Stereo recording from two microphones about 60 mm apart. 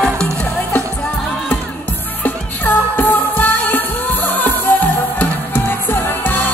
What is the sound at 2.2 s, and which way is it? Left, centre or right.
Music, left.